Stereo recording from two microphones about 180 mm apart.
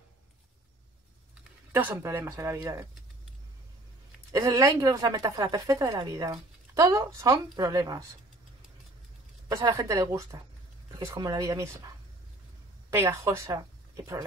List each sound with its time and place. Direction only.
1.7 s speech: 10° right (ahead or behind)
4.3 s a woman's voice: 15° right (ahead or behind)
9.5 s a woman's voice: 15° right (ahead or behind)
12.9 s speech: 15° right (ahead or behind)